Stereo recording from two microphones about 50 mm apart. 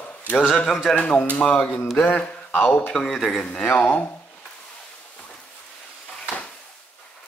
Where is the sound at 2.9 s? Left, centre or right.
Centre.